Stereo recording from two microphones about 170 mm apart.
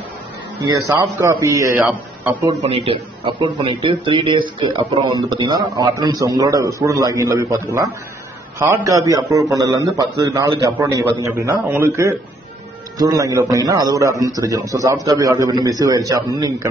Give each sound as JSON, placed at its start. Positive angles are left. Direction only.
{"t": 0.7, "sound": "a man's voice", "side_deg": -15}
{"t": 2.4, "sound": "a man's voice", "side_deg": -35}